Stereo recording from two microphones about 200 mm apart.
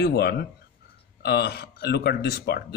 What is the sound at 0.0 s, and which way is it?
Speech, 55° left (ahead or behind).